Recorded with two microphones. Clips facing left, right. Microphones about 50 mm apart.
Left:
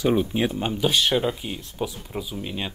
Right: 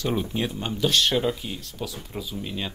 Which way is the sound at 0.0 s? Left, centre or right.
Centre.